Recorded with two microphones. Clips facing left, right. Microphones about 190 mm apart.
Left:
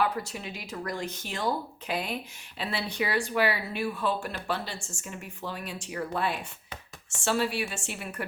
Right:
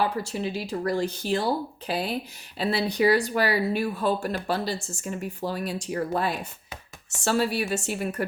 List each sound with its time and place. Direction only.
0.0 s speech: 30° right (ahead or behind)